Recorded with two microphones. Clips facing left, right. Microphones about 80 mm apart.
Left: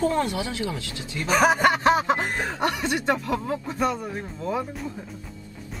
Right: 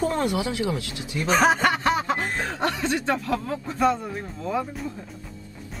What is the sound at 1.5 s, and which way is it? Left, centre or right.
Snicker, left.